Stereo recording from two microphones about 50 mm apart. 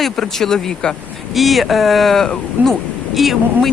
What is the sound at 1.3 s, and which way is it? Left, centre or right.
A man's voice, centre.